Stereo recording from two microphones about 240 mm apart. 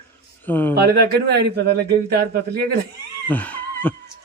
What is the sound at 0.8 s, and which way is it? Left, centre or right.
A man's voice, right.